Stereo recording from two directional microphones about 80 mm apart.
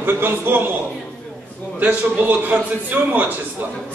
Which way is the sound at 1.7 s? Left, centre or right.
Centre.